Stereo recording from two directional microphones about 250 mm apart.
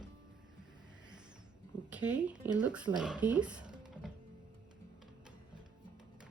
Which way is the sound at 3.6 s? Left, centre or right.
Centre.